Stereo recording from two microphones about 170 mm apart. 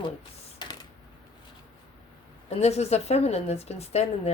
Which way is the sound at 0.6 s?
25° left (ahead or behind).